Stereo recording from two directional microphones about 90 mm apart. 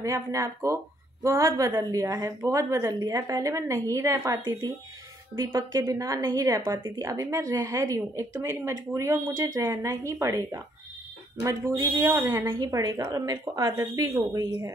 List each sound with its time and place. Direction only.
0.0 s a woman's voice: 35° right (ahead or behind)
12.5 s a woman's voice: 45° right (ahead or behind)